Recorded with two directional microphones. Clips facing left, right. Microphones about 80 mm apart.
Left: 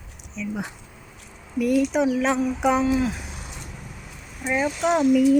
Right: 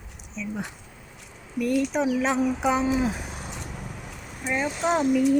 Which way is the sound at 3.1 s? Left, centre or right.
Right.